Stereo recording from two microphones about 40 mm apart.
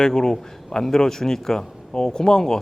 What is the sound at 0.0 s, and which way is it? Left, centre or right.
Speech, centre.